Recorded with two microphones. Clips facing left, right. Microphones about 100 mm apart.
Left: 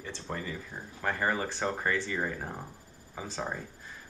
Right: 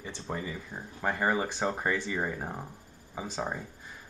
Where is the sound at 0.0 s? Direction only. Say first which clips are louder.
Right 1 dB; 15° right (ahead or behind).